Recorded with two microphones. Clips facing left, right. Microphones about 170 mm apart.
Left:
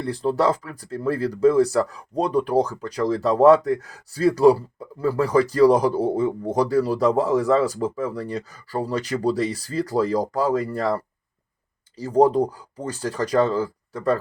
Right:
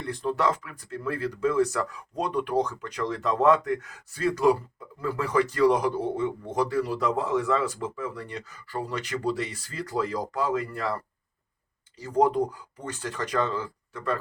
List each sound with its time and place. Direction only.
0.0 s speech: 35° left (ahead or behind)